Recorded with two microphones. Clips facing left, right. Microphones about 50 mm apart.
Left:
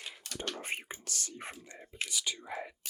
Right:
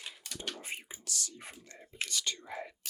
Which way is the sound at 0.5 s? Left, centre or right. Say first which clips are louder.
Left 4 dB; left.